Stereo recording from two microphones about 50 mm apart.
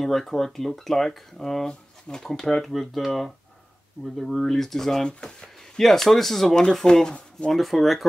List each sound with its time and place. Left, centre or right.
0.0 s speech: centre
7.5 s speech: centre